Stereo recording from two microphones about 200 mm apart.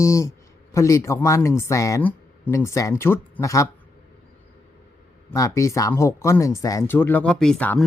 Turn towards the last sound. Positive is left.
turn(degrees=10)  # may be behind; listen again after turning